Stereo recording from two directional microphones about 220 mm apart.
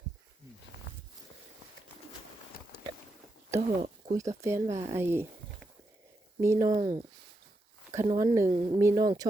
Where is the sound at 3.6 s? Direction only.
30° right (ahead or behind).